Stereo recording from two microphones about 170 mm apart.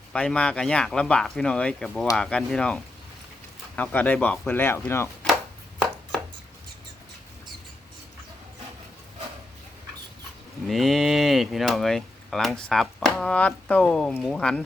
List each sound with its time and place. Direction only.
0.1 s speech: 5° left (ahead or behind)
10.7 s speech: centre (ahead or behind)